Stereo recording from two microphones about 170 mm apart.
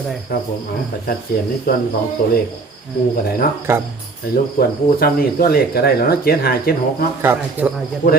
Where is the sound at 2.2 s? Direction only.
55° left (ahead or behind).